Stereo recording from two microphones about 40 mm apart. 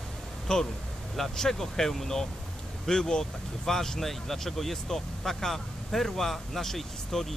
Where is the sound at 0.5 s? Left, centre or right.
Left.